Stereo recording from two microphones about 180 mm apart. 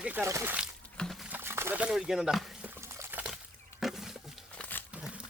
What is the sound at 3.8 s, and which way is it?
Wild animals, centre (ahead or behind).